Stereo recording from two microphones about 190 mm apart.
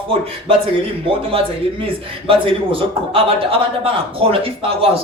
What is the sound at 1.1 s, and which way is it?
A man's voice, 30° right (ahead or behind).